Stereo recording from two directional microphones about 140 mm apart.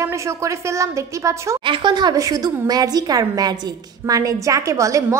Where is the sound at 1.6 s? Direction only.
35° right (ahead or behind).